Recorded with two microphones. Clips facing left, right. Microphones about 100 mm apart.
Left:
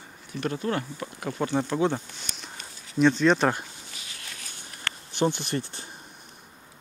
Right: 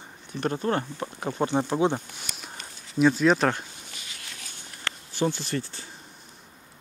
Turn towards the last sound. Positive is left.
turn(degrees=20)  # may be behind; listen again after turning